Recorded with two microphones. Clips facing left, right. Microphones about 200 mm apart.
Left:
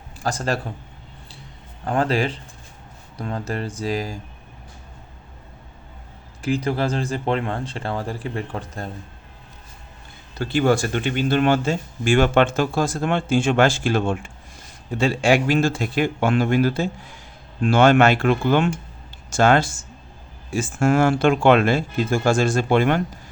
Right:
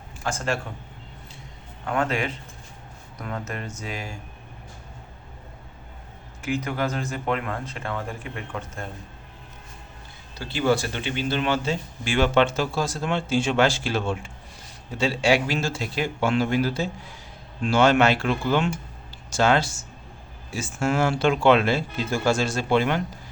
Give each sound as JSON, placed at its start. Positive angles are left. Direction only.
{"t": 0.2, "sound": "a man's voice", "side_deg": 35}
{"t": 1.8, "sound": "speech", "side_deg": 35}
{"t": 6.4, "sound": "speech", "side_deg": 35}
{"t": 10.3, "sound": "speech", "side_deg": 55}